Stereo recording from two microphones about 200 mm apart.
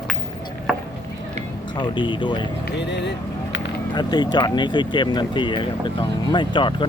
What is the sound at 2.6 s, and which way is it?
Vehicle, 60° left (ahead or behind).